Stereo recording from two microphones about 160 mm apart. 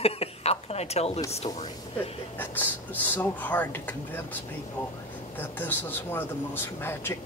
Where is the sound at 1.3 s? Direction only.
40° left (ahead or behind).